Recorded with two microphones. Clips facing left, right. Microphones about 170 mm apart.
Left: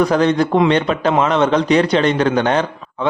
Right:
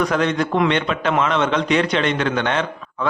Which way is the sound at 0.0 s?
35° left (ahead or behind).